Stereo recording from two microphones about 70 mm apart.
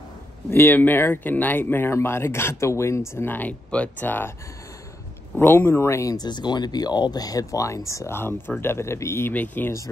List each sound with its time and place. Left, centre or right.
0.5 s speech: left
3.3 s speech: left
5.4 s speech: left
6.1 s speech: left
8.2 s speech: left
9.3 s speech: left